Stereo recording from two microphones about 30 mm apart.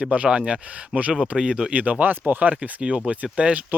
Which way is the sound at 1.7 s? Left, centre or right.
Right.